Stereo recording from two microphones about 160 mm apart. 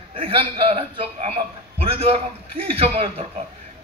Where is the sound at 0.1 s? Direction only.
35° right (ahead or behind).